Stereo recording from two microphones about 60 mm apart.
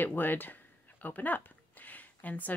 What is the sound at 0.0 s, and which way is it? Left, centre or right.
Speech, left.